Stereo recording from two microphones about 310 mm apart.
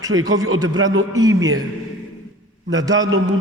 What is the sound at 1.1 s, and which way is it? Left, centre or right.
Speech, centre.